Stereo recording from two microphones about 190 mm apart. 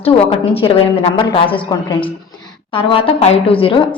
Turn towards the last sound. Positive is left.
turn(degrees=30)  # may be behind; listen again after turning